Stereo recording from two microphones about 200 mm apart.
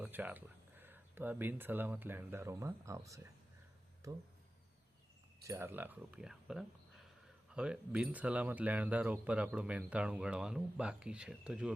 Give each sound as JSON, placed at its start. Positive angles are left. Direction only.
{"t": 0.0, "sound": "speech", "side_deg": -10}
{"t": 5.4, "sound": "speech", "side_deg": -15}